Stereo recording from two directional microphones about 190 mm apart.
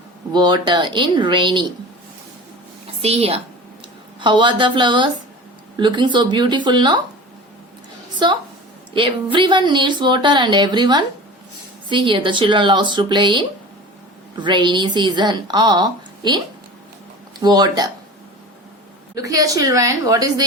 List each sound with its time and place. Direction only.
0.3 s speech: 20° right (ahead or behind)
3.0 s a woman's voice: 30° right (ahead or behind)
8.9 s speech: 25° right (ahead or behind)
17.4 s speech: 20° right (ahead or behind)
19.1 s a woman's voice: 15° right (ahead or behind)